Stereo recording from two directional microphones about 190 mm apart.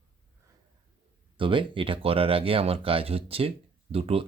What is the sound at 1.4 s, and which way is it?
Speech, 25° right (ahead or behind).